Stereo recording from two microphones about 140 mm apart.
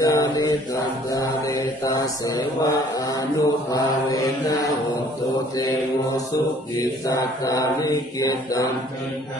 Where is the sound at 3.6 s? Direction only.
25° left (ahead or behind).